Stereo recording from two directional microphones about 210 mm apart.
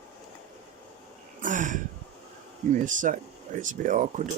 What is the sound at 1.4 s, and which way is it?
Speech, 40° right (ahead or behind).